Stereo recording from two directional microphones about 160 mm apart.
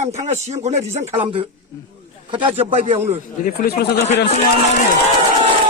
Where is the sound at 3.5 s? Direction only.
80° left.